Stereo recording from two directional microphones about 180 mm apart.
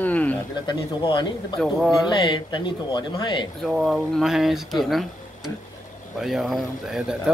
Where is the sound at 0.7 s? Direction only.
25° left (ahead or behind).